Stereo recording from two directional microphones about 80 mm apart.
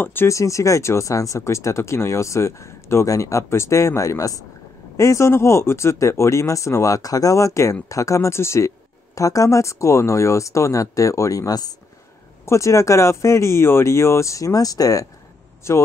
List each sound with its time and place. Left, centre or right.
0.0 s speech: left
0.3 s speech: left
12.4 s speech: left
15.7 s speech: left